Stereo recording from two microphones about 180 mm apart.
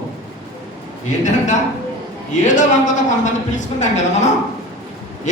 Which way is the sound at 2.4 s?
45° left (ahead or behind).